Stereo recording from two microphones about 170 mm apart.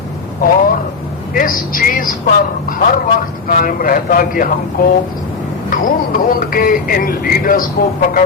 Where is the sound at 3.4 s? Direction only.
55° left (ahead or behind).